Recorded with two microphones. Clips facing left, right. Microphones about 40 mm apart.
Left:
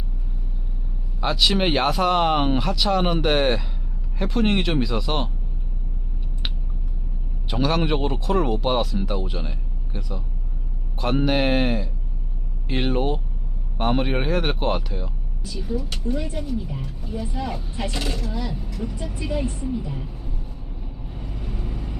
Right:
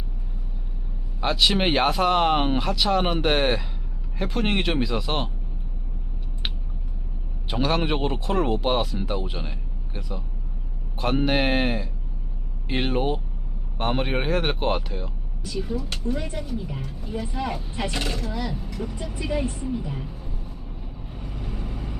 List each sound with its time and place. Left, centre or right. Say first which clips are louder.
1.2 s speech: left 1 dB; centre
7.5 s speech: left 2 dB; centre
15.4 s speech: even; right; by 19.0 s centre
19.8 s speech: even; right
21.1 s vehicle: even; centre